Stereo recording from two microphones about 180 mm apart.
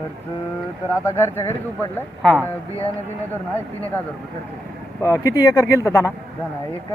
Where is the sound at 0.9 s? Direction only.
15° left (ahead or behind).